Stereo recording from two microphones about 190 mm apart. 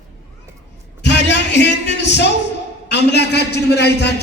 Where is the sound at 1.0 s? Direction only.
65° left (ahead or behind).